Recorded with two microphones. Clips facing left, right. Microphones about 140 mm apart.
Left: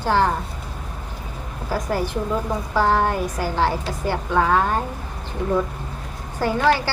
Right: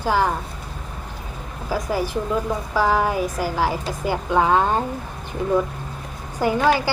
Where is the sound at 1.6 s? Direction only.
10° right (ahead or behind).